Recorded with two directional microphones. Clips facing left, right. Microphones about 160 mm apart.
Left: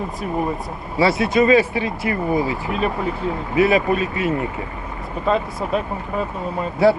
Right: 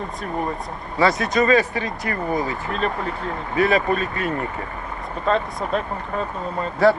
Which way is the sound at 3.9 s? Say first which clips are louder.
Left 3 dB; 40° right (ahead or behind).